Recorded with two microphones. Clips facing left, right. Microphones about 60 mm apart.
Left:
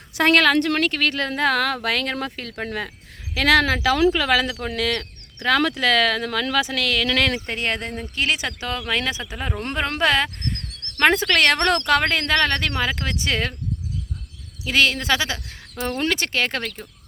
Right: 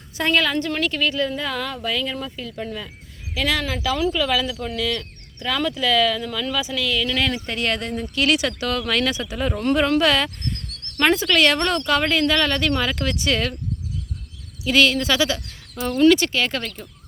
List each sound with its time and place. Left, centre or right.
0.2 s speech: left
3.3 s speech: left
3.9 s speech: left
7.3 s speech: left
12.8 s speech: left
14.6 s speech: left